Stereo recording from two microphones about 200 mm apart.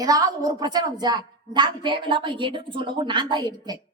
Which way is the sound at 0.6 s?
20° right (ahead or behind).